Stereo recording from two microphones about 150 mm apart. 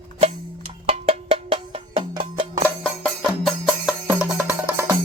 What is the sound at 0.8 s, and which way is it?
Cowbell, 40° right (ahead or behind).